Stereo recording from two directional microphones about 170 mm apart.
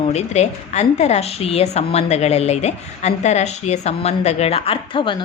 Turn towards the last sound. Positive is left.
turn(degrees=30)  # may be behind; listen again after turning